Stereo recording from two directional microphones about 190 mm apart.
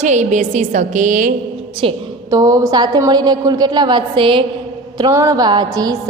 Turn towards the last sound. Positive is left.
turn(degrees=-20)  # may be behind; listen again after turning